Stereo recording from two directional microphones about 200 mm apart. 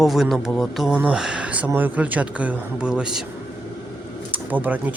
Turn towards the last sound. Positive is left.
turn(degrees=-10)  # may be behind; listen again after turning